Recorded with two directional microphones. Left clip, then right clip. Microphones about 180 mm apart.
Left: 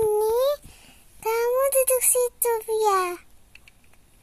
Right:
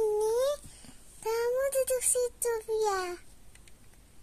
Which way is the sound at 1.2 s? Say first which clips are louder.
Left 7 dB; 35° left (ahead or behind).